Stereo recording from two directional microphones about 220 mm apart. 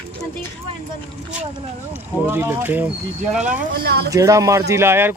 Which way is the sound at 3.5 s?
45° right (ahead or behind).